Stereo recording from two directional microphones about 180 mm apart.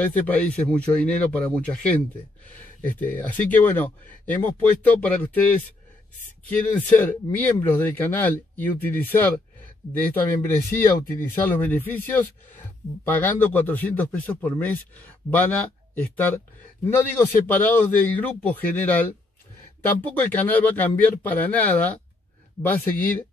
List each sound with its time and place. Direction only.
0.0 s speech: 10° left (ahead or behind)
7.0 s speech: 10° left (ahead or behind)